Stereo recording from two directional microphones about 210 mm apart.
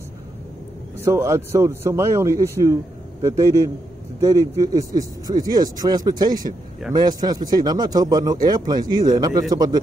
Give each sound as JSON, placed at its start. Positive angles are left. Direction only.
{"t": 0.9, "sound": "a man's voice", "side_deg": -10}